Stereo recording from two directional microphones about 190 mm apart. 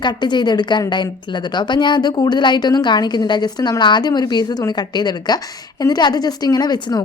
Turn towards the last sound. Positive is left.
turn(degrees=20)  # may be behind; listen again after turning